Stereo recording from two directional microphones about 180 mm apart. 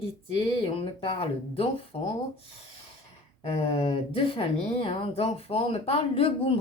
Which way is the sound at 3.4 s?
35° left (ahead or behind).